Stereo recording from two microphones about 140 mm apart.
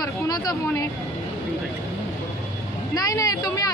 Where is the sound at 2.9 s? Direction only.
25° left (ahead or behind).